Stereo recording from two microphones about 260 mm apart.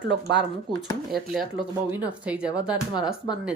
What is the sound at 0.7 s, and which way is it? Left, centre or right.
Speech, centre.